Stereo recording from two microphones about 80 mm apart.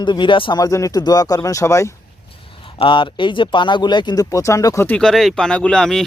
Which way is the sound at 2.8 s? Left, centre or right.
Left.